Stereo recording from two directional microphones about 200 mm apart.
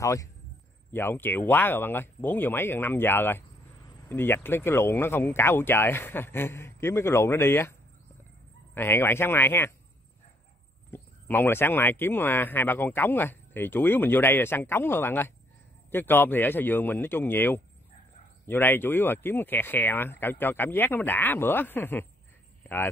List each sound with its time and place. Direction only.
0.0 s speech: 15° left (ahead or behind)
8.7 s speech: 10° left (ahead or behind)
10.9 s speech: 10° left (ahead or behind)